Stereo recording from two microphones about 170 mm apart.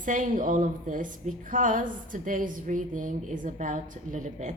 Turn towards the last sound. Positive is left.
turn(degrees=-45)  # may be behind; listen again after turning